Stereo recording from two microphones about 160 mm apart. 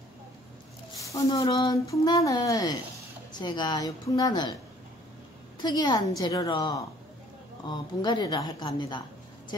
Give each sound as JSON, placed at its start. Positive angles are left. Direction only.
{"t": 1.4, "sound": "speech", "side_deg": 20}
{"t": 5.6, "sound": "speech", "side_deg": 25}